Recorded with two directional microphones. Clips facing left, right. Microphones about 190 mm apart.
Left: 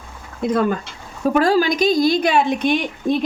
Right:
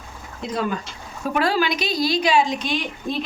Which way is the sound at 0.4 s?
50° left (ahead or behind).